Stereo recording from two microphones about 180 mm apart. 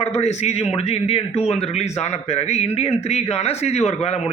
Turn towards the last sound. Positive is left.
turn(degrees=35)  # may be behind; listen again after turning